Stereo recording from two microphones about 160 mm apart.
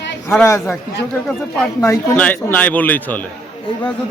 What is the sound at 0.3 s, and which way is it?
Speech, 15° left (ahead or behind).